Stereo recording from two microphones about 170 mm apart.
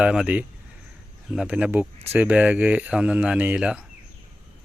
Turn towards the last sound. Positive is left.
turn(degrees=-5)  # may be behind; listen again after turning